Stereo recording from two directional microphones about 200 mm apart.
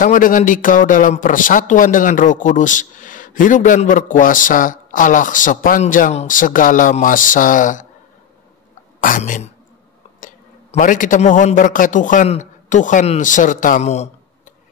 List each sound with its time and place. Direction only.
0.0 s speech: 40° left (ahead or behind)
9.0 s speech: 40° left (ahead or behind)